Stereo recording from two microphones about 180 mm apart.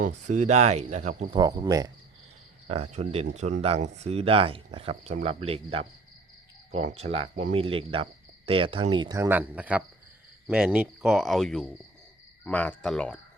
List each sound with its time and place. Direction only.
0.0 s speech: 40° right (ahead or behind)
1.3 s speech: 20° right (ahead or behind)
2.6 s speech: 35° right (ahead or behind); by 9.8 s 10° right (ahead or behind)
10.4 s cricket: 5° right (ahead or behind)